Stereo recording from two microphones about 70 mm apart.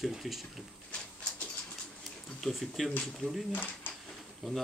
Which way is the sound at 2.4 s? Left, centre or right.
Centre.